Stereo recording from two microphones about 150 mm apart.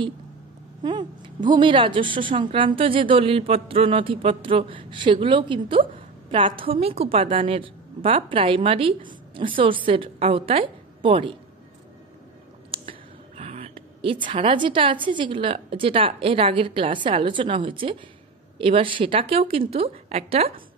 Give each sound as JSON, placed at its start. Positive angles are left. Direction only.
{"t": 0.8, "sound": "speech", "side_deg": -30}
{"t": 12.7, "sound": "a sound", "side_deg": -35}
{"t": 14.3, "sound": "speech", "side_deg": -35}